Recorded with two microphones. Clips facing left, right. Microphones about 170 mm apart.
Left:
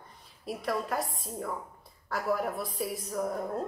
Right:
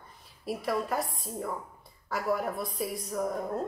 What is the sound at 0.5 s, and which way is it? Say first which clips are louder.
A woman's voice: right 2 dB; centre (ahead or behind).